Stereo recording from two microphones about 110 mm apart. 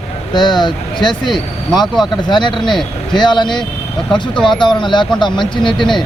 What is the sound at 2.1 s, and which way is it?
Speech, 45° left (ahead or behind).